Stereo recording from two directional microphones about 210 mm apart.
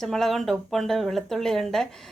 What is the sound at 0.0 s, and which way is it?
Speech, centre (ahead or behind).